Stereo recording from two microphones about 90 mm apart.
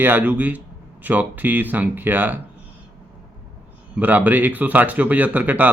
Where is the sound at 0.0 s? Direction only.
20° right (ahead or behind).